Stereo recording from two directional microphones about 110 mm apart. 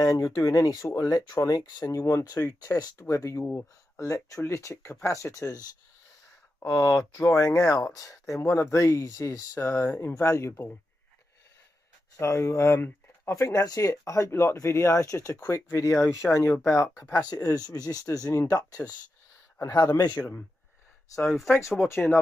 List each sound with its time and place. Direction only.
0.0 s speech: 30° left (ahead or behind)
6.6 s speech: 30° left (ahead or behind)
12.2 s speech: 25° left (ahead or behind)
21.2 s speech: centre (ahead or behind)